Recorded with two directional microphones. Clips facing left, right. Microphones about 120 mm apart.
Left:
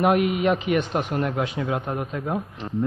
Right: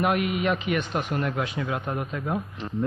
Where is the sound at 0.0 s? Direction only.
25° left (ahead or behind).